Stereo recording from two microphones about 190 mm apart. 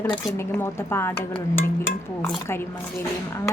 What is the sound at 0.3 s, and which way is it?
Speech, 15° left (ahead or behind).